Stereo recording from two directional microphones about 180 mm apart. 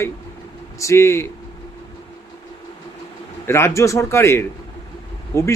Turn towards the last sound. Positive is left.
turn(degrees=15)  # may be behind; listen again after turning